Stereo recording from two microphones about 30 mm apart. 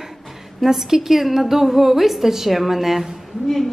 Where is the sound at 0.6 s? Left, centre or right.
Centre.